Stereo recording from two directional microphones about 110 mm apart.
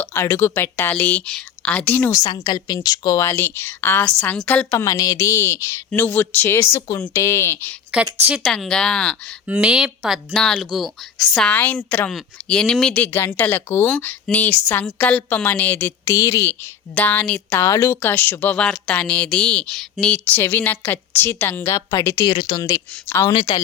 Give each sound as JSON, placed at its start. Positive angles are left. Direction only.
{"t": 0.0, "sound": "speech", "side_deg": 20}
{"t": 2.1, "sound": "a woman's voice", "side_deg": 40}
{"t": 4.7, "sound": "a woman's voice", "side_deg": 30}
{"t": 7.9, "sound": "a woman's voice", "side_deg": -10}
{"t": 8.4, "sound": "speech", "side_deg": 5}
{"t": 9.5, "sound": "a woman's voice", "side_deg": -10}
{"t": 10.3, "sound": "speech", "side_deg": 5}
{"t": 11.4, "sound": "speech", "side_deg": 15}
{"t": 13.0, "sound": "a woman's voice", "side_deg": 20}
{"t": 16.0, "sound": "a woman's voice", "side_deg": 30}
{"t": 17.6, "sound": "a woman's voice", "side_deg": 20}
{"t": 22.3, "sound": "speech", "side_deg": 45}
{"t": 23.0, "sound": "a woman's voice", "side_deg": 25}
{"t": 23.3, "sound": "speech", "side_deg": 50}